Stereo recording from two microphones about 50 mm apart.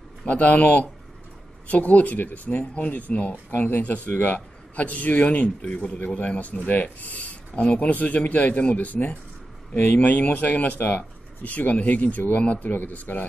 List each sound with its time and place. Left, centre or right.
0.2 s a man's voice: left